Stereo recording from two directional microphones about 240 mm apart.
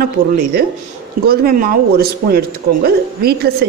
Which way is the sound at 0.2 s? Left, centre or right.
Right.